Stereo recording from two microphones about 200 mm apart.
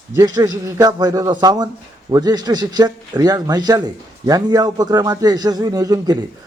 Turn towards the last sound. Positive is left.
turn(degrees=-20)  # may be behind; listen again after turning